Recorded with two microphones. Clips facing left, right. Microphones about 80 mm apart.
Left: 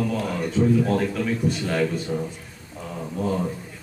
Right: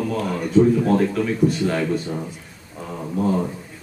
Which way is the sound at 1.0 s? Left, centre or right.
Centre.